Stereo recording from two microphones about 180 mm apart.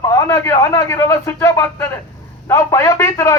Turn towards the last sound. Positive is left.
turn(degrees=15)  # may be behind; listen again after turning